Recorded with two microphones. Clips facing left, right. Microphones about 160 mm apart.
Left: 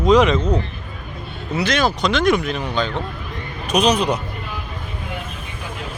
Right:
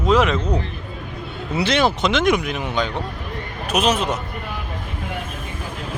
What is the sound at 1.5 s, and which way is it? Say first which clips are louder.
Speech: right 1 dB; 25° right (ahead or behind).